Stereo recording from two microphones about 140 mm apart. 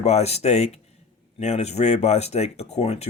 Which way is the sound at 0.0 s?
50° left (ahead or behind).